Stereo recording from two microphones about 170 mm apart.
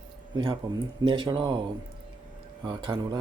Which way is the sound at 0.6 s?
25° right (ahead or behind).